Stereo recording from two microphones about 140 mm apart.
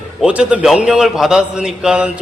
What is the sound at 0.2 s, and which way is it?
A man's voice, 10° right (ahead or behind).